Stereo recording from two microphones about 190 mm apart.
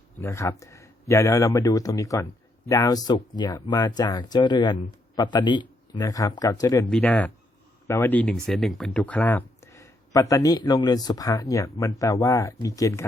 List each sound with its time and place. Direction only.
0.2 s speech: 15° left (ahead or behind)
6.9 s speech: 10° left (ahead or behind)